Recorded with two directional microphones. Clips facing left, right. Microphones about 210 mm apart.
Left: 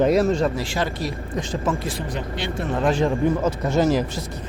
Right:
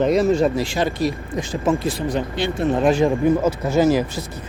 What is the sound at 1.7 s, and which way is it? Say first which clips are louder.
Speech: right 9 dB; 30° right (ahead or behind).